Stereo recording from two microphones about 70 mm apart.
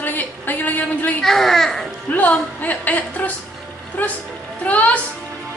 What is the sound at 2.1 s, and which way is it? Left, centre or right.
A woman's voice, left.